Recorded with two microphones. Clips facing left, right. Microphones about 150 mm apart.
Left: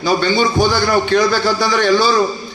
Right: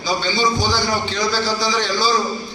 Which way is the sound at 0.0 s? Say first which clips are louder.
Left 5 dB; 60° left (ahead or behind).